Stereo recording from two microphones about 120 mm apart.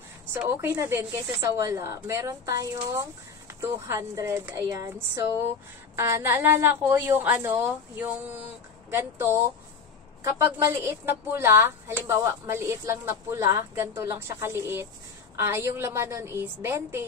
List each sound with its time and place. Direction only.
0.5 s speech: 20° right (ahead or behind)
10.2 s speech: 20° right (ahead or behind)